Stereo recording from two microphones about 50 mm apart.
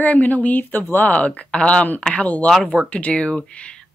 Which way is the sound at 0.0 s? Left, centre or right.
Left.